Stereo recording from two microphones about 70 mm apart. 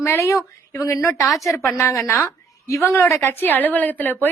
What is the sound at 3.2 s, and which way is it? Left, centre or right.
A woman's voice, left.